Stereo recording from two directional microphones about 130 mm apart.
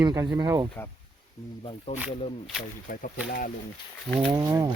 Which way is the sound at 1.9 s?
45° left (ahead or behind).